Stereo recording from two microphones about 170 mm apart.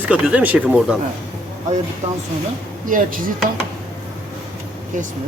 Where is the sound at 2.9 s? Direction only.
55° right (ahead or behind).